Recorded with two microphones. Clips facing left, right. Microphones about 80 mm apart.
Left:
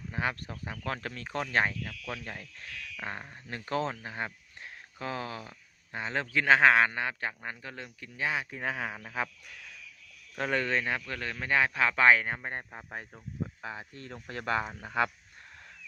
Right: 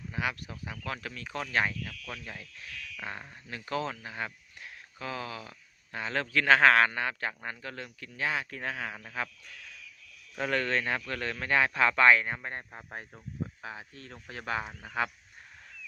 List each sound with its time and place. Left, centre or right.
0.1 s speech: left; by 12.1 s centre
12.2 s speech: left